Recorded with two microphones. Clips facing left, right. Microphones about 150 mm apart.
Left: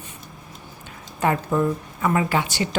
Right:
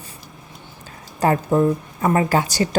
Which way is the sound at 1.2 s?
35° right (ahead or behind).